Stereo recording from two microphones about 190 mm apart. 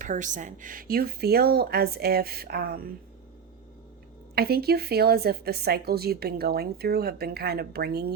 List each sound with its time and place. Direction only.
0.0 s speech: 40° right (ahead or behind)
4.4 s speech: 55° right (ahead or behind)